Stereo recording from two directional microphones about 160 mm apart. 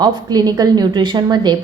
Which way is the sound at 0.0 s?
25° right (ahead or behind).